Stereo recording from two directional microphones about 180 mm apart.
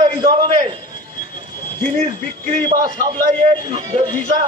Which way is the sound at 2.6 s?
25° right (ahead or behind).